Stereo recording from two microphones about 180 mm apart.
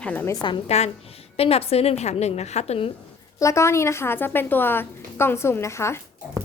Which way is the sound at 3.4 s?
15° left (ahead or behind).